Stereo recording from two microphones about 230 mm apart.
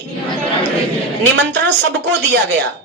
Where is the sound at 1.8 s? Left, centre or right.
Right.